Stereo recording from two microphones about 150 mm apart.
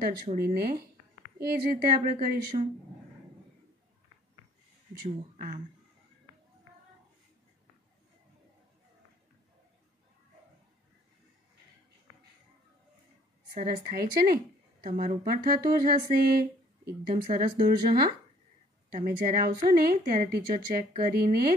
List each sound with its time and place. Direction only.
0.4 s a woman's voice: 90° right; by 2.6 s 70° right (ahead or behind)
4.9 s speech: 75° right (ahead or behind)
13.7 s a woman's voice: 85° right
15.0 s speech: 65° right (ahead or behind); by 16.4 s 85° right
17.1 s speech: 60° right (ahead or behind); by 18.1 s 90° right
18.9 s a woman's voice: 65° right (ahead or behind)